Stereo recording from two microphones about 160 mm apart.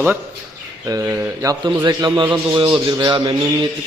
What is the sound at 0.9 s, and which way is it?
A man's voice, 20° right (ahead or behind).